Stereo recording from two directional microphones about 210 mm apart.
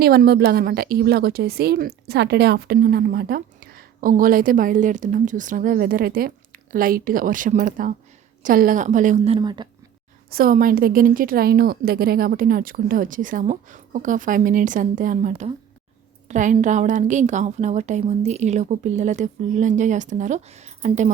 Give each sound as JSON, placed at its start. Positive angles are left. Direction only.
{"t": 0.0, "sound": "a woman's voice", "side_deg": -45}
{"t": 9.4, "sound": "speech", "side_deg": -20}
{"t": 10.2, "sound": "a woman's voice", "side_deg": -45}